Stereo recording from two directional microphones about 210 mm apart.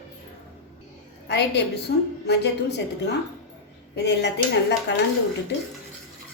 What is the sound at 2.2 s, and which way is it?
A woman's voice, 55° left (ahead or behind).